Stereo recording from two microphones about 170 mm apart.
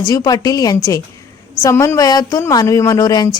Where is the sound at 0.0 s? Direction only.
25° left (ahead or behind).